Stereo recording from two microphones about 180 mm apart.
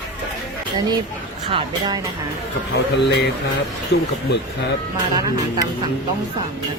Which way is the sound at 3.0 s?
70° left (ahead or behind).